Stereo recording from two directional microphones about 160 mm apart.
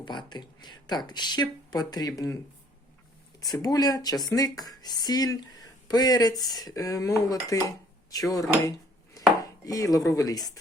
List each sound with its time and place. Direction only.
0.0 s speech: 30° left (ahead or behind)
3.4 s speech: 25° left (ahead or behind)
9.4 s chopping: 20° left (ahead or behind)